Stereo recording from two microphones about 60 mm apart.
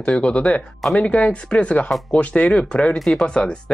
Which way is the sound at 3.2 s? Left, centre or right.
Centre.